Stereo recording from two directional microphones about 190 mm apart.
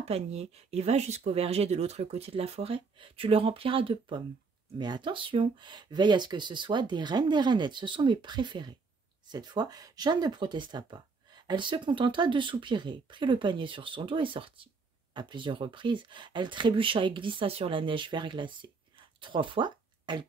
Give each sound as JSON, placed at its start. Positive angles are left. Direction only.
{"t": 0.0, "sound": "speech", "side_deg": -35}